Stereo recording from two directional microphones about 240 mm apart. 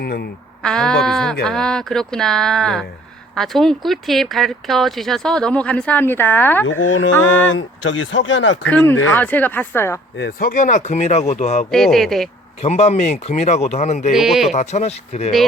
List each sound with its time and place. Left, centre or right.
0.0 s speech: left
0.6 s speech: centre
6.7 s mantra: left
7.4 s speech: left
8.6 s speech: centre
10.2 s speech: left
11.7 s speech: centre
12.6 s speech: left
14.1 s speech: centre
14.5 s speech: left